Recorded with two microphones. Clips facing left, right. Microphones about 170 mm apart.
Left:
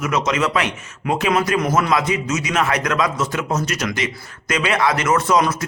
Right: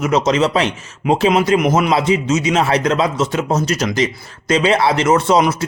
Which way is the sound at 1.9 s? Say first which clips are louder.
Right 4 dB; 30° right (ahead or behind).